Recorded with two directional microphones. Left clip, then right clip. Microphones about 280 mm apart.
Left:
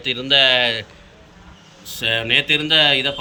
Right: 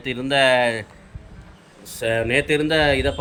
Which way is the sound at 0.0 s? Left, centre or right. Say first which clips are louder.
Left 3 dB; centre.